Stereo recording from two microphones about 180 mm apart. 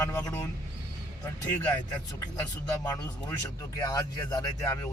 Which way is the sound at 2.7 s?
20° left (ahead or behind).